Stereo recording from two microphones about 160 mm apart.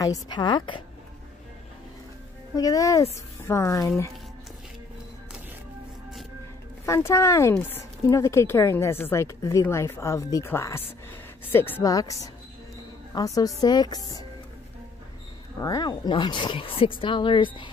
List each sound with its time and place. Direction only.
0.0 s speech: 25° left (ahead or behind)
2.5 s speech: 25° left (ahead or behind)
6.9 s speech: 20° left (ahead or behind)
15.6 s speech: 25° left (ahead or behind)